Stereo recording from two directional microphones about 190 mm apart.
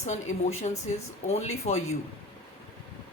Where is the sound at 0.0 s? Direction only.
35° left (ahead or behind).